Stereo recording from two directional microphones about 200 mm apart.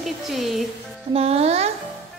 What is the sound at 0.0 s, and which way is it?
Speech, centre (ahead or behind).